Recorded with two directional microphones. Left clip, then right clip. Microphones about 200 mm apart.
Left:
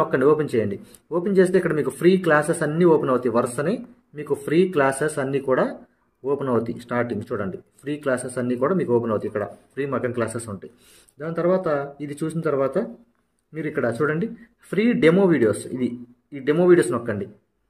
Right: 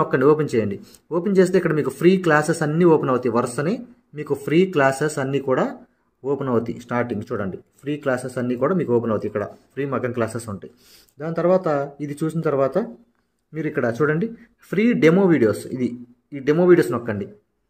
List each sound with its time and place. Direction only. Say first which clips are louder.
0.0 s speech: right 1 dB; 35° right (ahead or behind)